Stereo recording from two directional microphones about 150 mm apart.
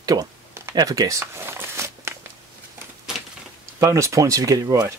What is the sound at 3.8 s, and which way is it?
Speech, 20° right (ahead or behind).